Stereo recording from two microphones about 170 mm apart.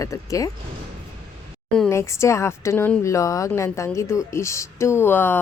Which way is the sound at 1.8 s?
15° left (ahead or behind).